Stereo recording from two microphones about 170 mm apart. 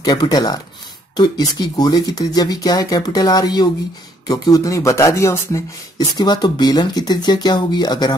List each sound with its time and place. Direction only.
0.0 s speech: 25° left (ahead or behind)